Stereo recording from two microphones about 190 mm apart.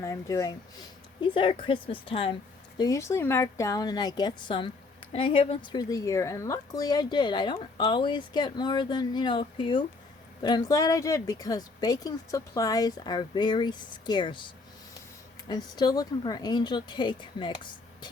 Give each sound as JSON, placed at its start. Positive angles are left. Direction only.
{"t": 0.0, "sound": "speech", "side_deg": 15}